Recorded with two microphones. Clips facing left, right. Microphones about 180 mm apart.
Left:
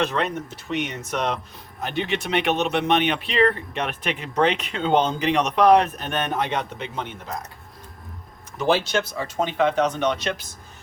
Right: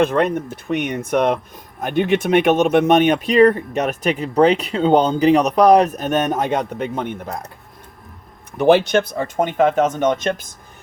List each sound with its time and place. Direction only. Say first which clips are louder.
0.0 s speech: right 7 dB; 50° right (ahead or behind)
8.5 s speech: right 8 dB; 60° right (ahead or behind)